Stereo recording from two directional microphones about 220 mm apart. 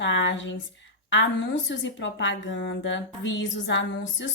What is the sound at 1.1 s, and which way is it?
A woman's voice, 55° left (ahead or behind).